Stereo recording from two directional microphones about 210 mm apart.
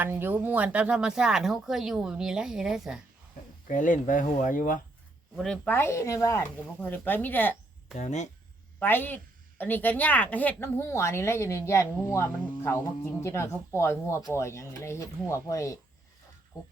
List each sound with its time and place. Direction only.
0.0 s speech: 10° right (ahead or behind)
3.7 s speech: 40° left (ahead or behind)
5.4 s a woman's voice: 5° left (ahead or behind)
7.9 s speech: 35° left (ahead or behind)
8.8 s a woman's voice: 10° left (ahead or behind)